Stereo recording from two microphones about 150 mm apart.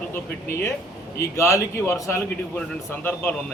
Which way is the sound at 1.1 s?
20° left (ahead or behind).